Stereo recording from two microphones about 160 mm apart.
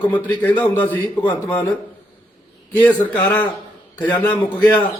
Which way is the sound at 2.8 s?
10° left (ahead or behind).